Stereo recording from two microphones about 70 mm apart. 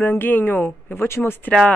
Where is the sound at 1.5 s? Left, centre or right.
Centre.